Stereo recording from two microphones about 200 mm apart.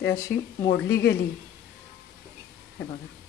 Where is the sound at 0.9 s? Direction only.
55° left (ahead or behind).